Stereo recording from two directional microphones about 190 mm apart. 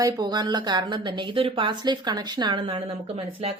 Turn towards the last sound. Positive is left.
turn(degrees=-30)  # may be behind; listen again after turning